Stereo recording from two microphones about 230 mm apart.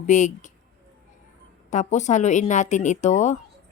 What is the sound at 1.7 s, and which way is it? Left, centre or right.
Speech, left.